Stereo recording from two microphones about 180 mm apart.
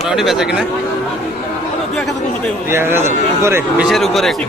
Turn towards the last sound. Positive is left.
turn(degrees=0)  # may be behind; listen again after turning